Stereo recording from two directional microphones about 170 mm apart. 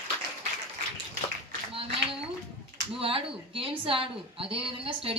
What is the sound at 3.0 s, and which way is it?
A woman's voice, 30° right (ahead or behind).